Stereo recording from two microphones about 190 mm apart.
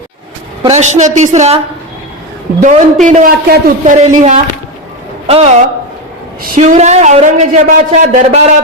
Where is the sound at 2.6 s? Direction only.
40° right (ahead or behind).